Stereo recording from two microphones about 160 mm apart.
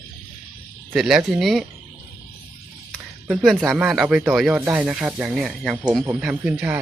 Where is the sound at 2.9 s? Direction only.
5° right (ahead or behind).